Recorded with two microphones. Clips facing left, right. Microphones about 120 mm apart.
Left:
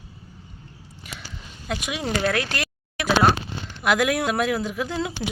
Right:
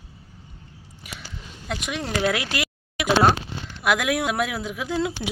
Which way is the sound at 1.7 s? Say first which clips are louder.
Left 1 dB; 5° left (ahead or behind).